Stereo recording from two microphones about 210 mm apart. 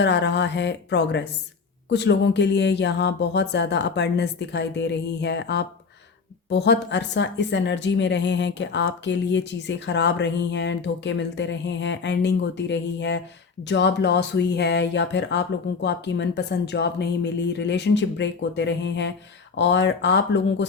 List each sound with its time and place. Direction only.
0.0 s speech: 55° left (ahead or behind)